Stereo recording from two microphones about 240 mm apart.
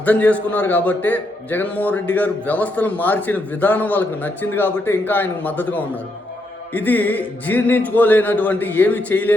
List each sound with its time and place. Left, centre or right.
0.0 s a man's voice: centre